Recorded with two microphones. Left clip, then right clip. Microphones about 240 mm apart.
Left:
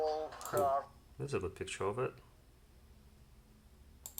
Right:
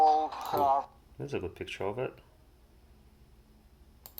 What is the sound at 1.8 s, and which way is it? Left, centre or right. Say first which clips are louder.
Speech: right 2 dB; centre.